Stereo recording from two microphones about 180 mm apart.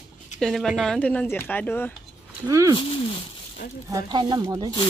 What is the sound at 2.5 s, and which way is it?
Speech, 20° right (ahead or behind).